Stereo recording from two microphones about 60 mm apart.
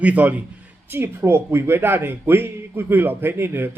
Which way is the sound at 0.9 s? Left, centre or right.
Right.